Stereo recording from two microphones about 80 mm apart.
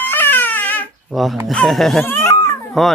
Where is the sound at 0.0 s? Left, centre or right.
Left.